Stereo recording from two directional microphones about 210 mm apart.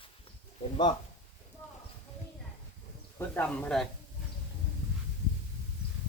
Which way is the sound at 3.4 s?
5° left (ahead or behind).